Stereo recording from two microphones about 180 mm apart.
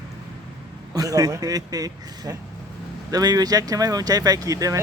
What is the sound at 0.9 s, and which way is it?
A man's voice, 20° right (ahead or behind).